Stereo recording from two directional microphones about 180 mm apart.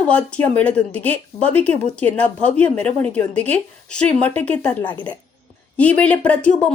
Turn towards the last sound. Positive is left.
turn(degrees=5)  # may be behind; listen again after turning